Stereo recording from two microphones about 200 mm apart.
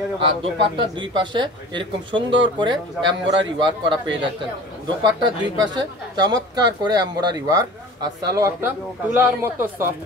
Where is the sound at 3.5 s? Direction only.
25° right (ahead or behind).